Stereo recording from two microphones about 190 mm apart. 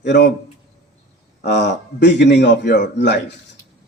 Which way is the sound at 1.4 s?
65° left (ahead or behind).